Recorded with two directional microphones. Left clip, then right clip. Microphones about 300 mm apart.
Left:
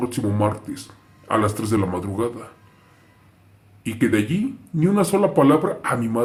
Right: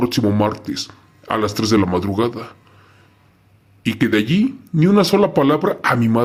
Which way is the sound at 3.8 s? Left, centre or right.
Right.